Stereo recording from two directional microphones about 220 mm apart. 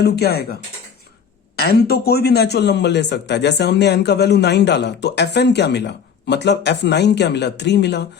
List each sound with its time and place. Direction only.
0.0 s a man's voice: 45° left (ahead or behind)
1.5 s a man's voice: 45° left (ahead or behind)